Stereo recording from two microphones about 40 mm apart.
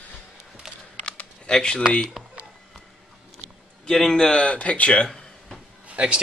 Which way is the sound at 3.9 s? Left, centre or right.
Centre.